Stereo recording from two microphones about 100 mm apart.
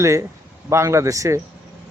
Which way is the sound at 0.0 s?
30° right (ahead or behind).